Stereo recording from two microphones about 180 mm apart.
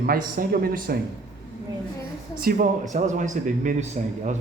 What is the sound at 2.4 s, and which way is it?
A man's voice, 45° right (ahead or behind).